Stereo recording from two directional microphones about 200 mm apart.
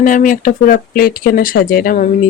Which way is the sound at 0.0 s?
40° left (ahead or behind).